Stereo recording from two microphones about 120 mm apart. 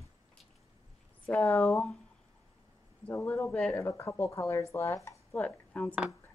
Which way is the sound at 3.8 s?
20° left (ahead or behind).